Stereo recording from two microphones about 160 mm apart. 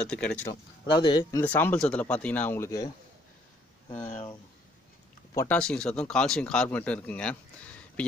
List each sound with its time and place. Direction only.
0.0 s speech: 5° left (ahead or behind)
1.0 s speech: 25° left (ahead or behind)
1.4 s speech: 10° left (ahead or behind)
5.3 s speech: 15° left (ahead or behind)
5.6 s speech: 5° left (ahead or behind)